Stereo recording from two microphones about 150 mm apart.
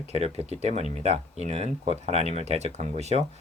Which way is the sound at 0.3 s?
45° right (ahead or behind).